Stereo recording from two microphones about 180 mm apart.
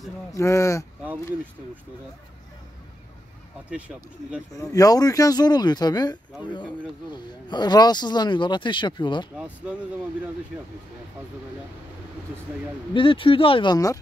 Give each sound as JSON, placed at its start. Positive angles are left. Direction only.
{"t": 0.3, "sound": "speech", "side_deg": 15}
{"t": 3.7, "sound": "speech", "side_deg": -5}
{"t": 4.7, "sound": "speech", "side_deg": 20}
{"t": 12.9, "sound": "speech", "side_deg": 30}